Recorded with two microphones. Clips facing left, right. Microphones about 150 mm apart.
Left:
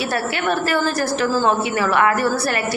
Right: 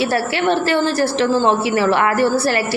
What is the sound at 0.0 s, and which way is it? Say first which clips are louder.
A woman's voice: right 4 dB; 30° right (ahead or behind).